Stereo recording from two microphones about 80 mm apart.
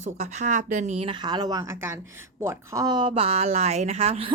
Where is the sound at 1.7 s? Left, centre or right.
Right.